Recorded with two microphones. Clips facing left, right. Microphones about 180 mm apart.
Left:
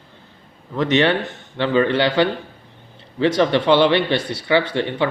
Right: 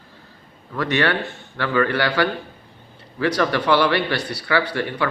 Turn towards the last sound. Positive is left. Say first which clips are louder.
# left 3 dB
turn(degrees=20)  # may be behind; listen again after turning